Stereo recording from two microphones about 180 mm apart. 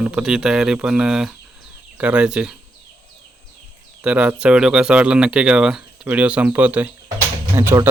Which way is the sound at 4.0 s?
5° right (ahead or behind).